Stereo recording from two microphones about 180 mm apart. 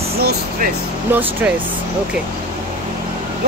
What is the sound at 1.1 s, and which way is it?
Speech, 10° right (ahead or behind).